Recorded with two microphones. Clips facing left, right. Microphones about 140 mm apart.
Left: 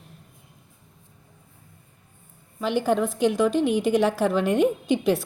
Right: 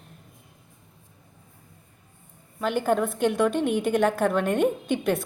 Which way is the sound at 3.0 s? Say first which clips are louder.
Left 1 dB; 55° right (ahead or behind).